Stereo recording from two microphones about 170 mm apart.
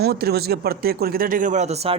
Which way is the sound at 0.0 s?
70° right (ahead or behind).